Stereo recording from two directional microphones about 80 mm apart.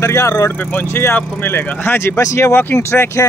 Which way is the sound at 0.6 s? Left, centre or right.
Left.